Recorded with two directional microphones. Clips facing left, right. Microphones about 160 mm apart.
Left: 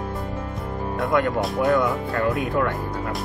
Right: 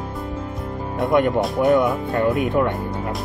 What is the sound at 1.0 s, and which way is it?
Speech, 20° right (ahead or behind).